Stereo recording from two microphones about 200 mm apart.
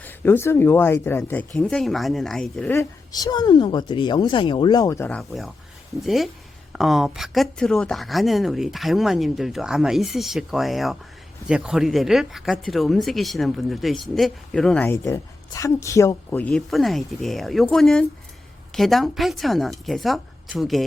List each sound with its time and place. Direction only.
0.0 s speech: 10° left (ahead or behind)
5.0 s speech: 5° left (ahead or behind)